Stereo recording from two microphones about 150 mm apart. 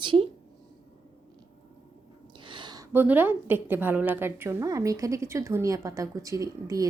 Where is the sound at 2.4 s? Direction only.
30° right (ahead or behind).